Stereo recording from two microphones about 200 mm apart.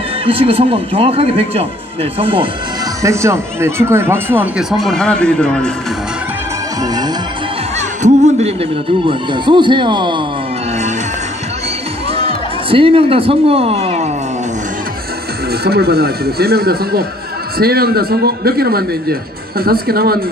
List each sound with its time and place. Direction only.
0.2 s speech: 25° right (ahead or behind)
3.0 s speech: 15° right (ahead or behind); by 5.7 s 5° left (ahead or behind)
6.8 s music: 20° right (ahead or behind)
8.0 s a sound: 35° right (ahead or behind)
9.0 s speech: 25° right (ahead or behind)
12.1 s a sound: 30° right (ahead or behind)
15.6 s a man's voice: 50° right (ahead or behind)